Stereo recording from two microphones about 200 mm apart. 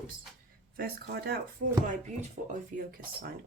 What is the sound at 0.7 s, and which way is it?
Speech, 50° right (ahead or behind).